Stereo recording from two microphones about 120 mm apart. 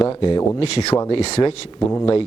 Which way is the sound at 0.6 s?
60° left (ahead or behind).